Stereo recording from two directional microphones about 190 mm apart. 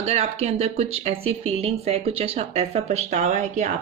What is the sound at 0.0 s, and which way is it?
Speech, 35° right (ahead or behind).